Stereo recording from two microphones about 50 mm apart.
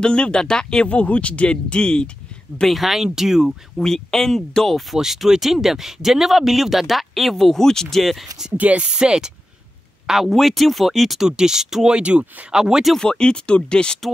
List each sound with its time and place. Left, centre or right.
0.0 s speech: centre
0.8 s speech: left
2.7 s speech: centre
3.8 s speech: centre
4.9 s speech: centre
8.0 s speech: centre
8.5 s speech: right
10.0 s speech: centre; by 12.5 s right
12.5 s speech: centre
12.9 s speech: centre